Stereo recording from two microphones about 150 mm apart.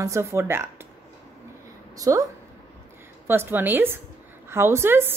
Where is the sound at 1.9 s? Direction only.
20° right (ahead or behind).